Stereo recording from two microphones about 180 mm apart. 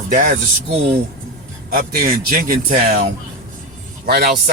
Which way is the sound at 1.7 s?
55° right (ahead or behind).